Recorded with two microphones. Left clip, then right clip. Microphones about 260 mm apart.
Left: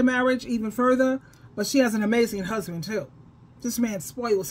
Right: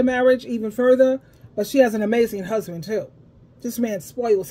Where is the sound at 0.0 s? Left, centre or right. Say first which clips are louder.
Right 5 dB; centre.